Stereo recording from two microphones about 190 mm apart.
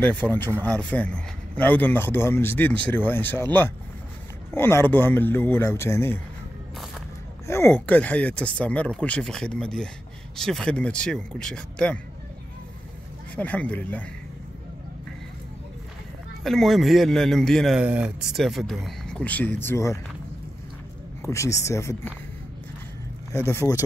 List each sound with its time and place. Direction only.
0.0 s a man's voice: 10° left (ahead or behind)
4.6 s a man's voice: 10° left (ahead or behind)
7.4 s a man's voice: 15° left (ahead or behind)
13.4 s a man's voice: 10° left (ahead or behind)
16.4 s a man's voice: centre (ahead or behind)
21.2 s a man's voice: 15° left (ahead or behind)
23.3 s a man's voice: 15° left (ahead or behind)